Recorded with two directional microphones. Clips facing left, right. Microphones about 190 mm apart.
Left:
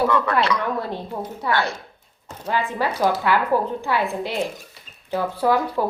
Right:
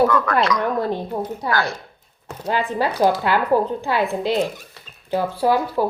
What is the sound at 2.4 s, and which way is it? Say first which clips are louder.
Speech: right 2 dB; 35° right (ahead or behind).